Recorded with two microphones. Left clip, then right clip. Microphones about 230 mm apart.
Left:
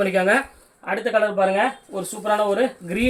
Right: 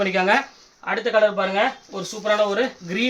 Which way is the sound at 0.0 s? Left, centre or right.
Right.